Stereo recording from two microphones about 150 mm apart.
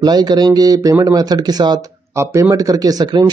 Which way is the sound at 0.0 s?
25° right (ahead or behind).